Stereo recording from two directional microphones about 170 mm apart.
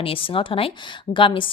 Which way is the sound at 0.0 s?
30° left (ahead or behind).